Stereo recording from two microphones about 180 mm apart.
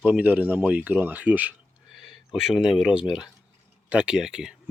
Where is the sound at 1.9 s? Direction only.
Centre (ahead or behind).